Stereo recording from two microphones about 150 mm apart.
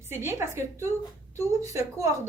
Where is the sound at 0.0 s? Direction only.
15° right (ahead or behind).